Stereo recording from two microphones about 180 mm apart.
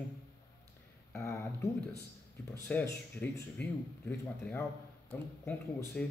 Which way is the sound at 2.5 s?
10° left (ahead or behind).